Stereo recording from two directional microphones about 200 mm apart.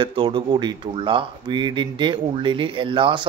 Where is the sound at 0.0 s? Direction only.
25° right (ahead or behind).